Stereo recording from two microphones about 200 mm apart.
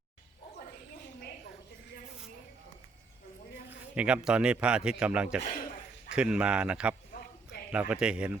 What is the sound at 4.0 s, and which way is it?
A man's voice, 5° right (ahead or behind).